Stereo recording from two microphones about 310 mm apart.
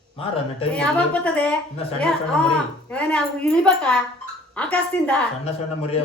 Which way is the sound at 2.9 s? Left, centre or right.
Centre.